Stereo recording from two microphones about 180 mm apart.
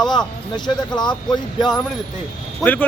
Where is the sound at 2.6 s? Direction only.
10° left (ahead or behind).